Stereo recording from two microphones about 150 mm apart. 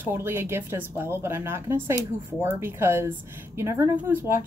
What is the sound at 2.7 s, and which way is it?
Speech, 15° right (ahead or behind).